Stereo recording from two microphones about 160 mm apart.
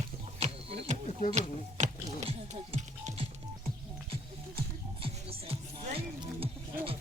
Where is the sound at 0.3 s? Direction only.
45° right (ahead or behind).